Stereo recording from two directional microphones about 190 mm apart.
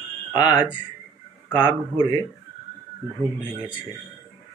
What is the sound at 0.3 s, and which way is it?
Speech, 20° left (ahead or behind).